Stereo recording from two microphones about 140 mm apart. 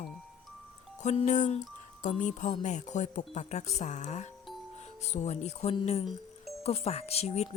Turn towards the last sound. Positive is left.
turn(degrees=50)  # may be behind; listen again after turning